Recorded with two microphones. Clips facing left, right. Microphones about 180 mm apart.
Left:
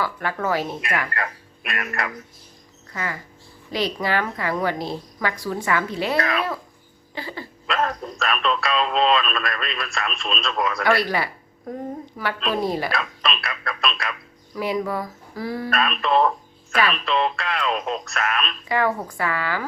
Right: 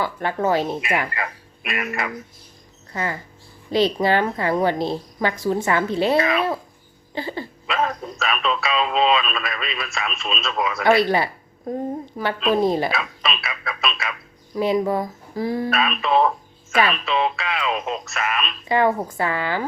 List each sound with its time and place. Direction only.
0.0 s a woman's voice: 25° right (ahead or behind)
1.1 s speech: centre (ahead or behind)
2.9 s a woman's voice: 30° right (ahead or behind)
6.1 s speech: centre (ahead or behind)
7.1 s a sound: 25° right (ahead or behind)
7.7 s speech: centre (ahead or behind)
11.0 s a woman's voice: 25° right (ahead or behind)
12.9 s speech: centre (ahead or behind)
14.5 s a woman's voice: 25° right (ahead or behind)
15.7 s speech: centre (ahead or behind)
18.7 s a woman's voice: 25° right (ahead or behind)